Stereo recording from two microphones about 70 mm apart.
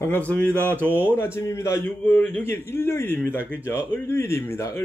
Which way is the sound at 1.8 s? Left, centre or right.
Left.